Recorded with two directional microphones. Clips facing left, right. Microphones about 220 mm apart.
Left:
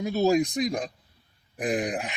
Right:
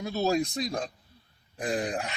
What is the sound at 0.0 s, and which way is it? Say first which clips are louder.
Speech: left 5 dB; 15° left (ahead or behind).